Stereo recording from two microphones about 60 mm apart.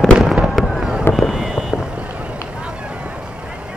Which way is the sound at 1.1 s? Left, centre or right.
Centre.